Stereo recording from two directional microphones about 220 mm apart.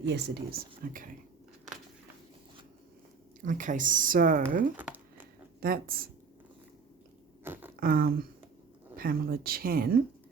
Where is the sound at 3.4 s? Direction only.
35° right (ahead or behind).